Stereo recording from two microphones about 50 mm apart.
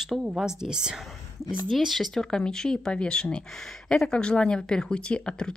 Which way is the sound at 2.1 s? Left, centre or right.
Centre.